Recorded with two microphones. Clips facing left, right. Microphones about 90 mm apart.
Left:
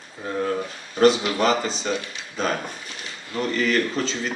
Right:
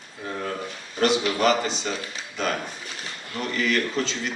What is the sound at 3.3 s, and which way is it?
Speech, 35° left (ahead or behind).